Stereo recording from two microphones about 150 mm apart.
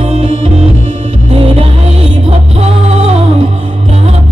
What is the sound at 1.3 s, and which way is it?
Music, 40° right (ahead or behind).